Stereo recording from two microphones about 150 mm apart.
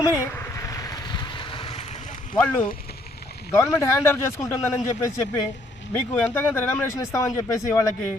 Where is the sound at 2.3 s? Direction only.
10° left (ahead or behind).